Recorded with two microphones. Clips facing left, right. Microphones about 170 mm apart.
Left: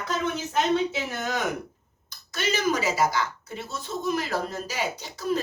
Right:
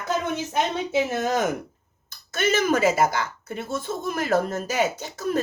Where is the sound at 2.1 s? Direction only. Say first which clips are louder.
Right 5 dB; 50° right (ahead or behind).